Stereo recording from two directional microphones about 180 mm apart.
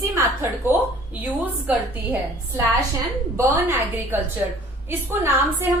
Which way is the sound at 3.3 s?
15° right (ahead or behind).